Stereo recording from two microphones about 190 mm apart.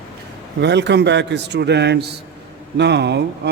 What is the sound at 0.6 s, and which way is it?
Speech, 65° right (ahead or behind).